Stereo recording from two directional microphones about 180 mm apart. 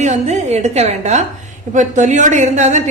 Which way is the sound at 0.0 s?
40° right (ahead or behind).